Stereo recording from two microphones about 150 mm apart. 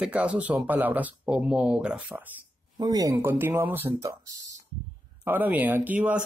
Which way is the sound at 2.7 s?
25° right (ahead or behind).